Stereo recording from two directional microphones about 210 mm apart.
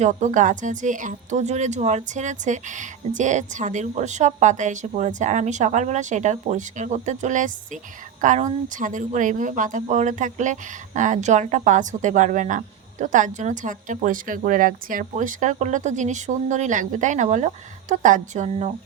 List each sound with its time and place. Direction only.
0.0 s speech: 35° right (ahead or behind)